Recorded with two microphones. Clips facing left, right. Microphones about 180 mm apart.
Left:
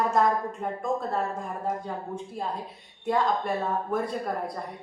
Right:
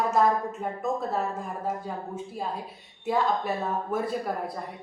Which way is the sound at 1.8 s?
5° right (ahead or behind).